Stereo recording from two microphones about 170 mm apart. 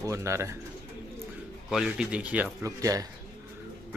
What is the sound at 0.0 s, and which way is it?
Speech, 15° right (ahead or behind).